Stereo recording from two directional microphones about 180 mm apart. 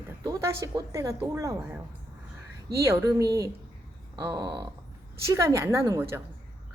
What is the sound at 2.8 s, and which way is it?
A woman's voice, 15° right (ahead or behind).